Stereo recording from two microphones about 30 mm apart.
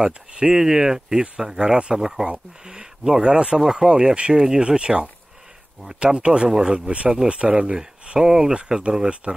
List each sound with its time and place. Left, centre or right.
0.0 s speech: right
0.6 s speech: centre
2.0 s speech: centre
3.9 s speech: right
6.1 s speech: right
6.5 s speech: right
7.2 s speech: right
8.2 s speech: centre